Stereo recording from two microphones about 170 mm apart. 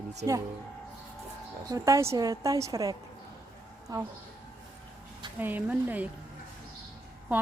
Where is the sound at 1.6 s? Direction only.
20° right (ahead or behind).